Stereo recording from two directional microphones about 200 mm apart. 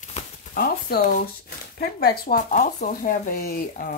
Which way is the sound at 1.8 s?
50° left (ahead or behind).